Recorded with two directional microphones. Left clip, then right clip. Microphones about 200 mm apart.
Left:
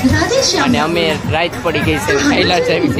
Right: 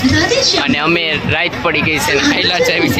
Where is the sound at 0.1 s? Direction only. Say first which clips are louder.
Right 2 dB; 50° left (ahead or behind).